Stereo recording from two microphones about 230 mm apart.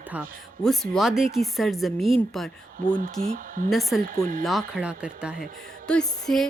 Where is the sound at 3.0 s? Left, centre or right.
Right.